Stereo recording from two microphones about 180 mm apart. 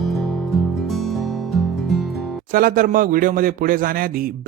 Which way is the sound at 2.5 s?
50° right (ahead or behind).